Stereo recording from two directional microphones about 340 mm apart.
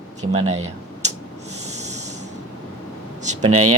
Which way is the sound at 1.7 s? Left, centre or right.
Centre.